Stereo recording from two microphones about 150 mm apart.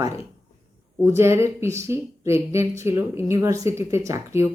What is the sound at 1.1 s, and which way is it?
A woman's voice, 15° right (ahead or behind).